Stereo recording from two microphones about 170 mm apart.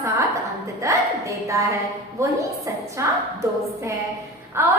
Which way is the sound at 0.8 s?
20° right (ahead or behind).